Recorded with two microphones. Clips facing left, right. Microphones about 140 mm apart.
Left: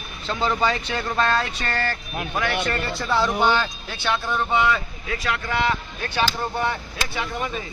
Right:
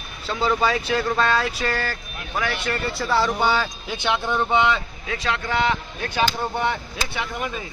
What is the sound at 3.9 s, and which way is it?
Speech, 20° right (ahead or behind).